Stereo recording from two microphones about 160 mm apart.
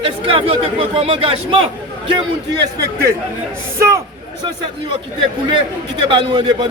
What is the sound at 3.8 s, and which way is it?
Speech, 20° right (ahead or behind).